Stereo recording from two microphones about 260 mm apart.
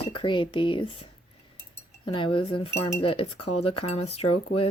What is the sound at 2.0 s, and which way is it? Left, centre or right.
Cutlery, centre.